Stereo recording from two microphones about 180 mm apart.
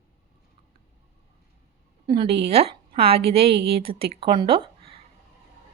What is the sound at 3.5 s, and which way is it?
Speech, 65° right (ahead or behind).